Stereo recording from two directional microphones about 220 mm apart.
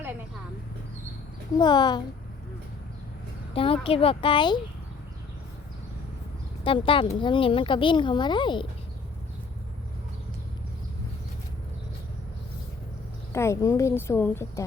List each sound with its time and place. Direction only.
1.5 s speech: 20° left (ahead or behind)
3.5 s speech: 25° left (ahead or behind)
6.7 s speech: 25° left (ahead or behind)
13.3 s a woman's voice: 15° left (ahead or behind)